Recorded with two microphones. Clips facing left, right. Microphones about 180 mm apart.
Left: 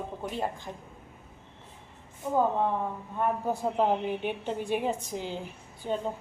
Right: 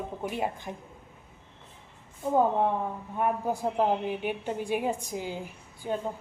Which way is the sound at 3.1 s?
15° right (ahead or behind).